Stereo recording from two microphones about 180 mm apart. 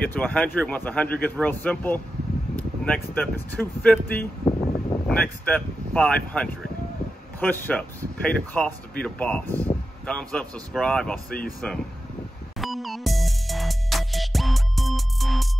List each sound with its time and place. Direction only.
0.1 s speech: 10° left (ahead or behind)
12.5 s music: centre (ahead or behind)